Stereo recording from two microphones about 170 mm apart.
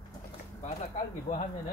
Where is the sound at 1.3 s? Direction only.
40° left (ahead or behind).